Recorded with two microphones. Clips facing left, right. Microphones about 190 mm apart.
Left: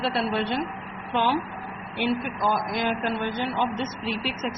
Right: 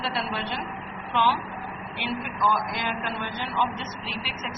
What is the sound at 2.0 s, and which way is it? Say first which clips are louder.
A man's voice: left 4 dB; 45° left (ahead or behind).